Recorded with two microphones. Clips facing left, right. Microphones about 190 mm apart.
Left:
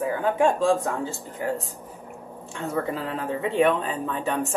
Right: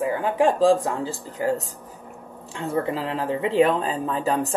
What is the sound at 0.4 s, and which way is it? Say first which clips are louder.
Speech: right 4 dB; 30° right (ahead or behind).